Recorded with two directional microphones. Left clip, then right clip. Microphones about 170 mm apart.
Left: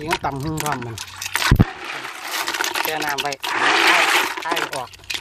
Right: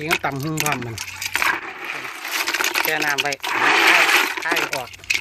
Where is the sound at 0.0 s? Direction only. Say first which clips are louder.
Right 1 dB; centre (ahead or behind).